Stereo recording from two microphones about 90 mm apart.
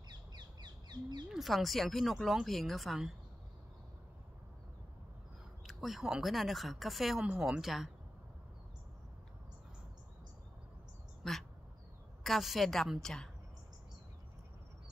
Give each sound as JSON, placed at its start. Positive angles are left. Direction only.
{"t": 0.3, "sound": "bird", "side_deg": -50}
{"t": 1.3, "sound": "speech", "side_deg": 0}
{"t": 5.7, "sound": "speech", "side_deg": 0}
{"t": 7.2, "sound": "a woman's voice", "side_deg": -10}
{"t": 11.2, "sound": "duck", "side_deg": 5}
{"t": 12.2, "sound": "speech", "side_deg": 0}